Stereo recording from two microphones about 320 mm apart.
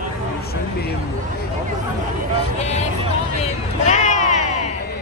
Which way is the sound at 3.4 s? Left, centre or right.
Left.